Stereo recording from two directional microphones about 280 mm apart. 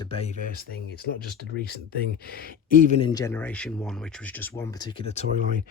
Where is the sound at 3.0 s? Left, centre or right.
Centre.